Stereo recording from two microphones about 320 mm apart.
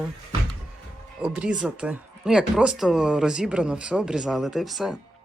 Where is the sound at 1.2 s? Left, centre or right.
Centre.